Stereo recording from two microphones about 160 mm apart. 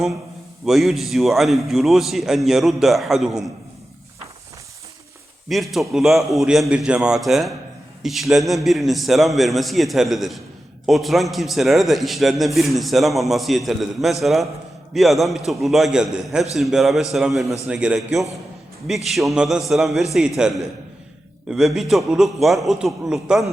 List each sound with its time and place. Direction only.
0.6 s a man's voice: centre (ahead or behind)
5.5 s a man's voice: centre (ahead or behind)
21.5 s a man's voice: centre (ahead or behind)